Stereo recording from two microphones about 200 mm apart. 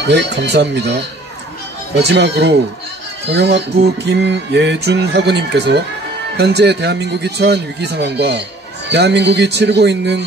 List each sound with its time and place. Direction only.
0.1 s speech: 60° right (ahead or behind)
2.0 s speech: 60° right (ahead or behind)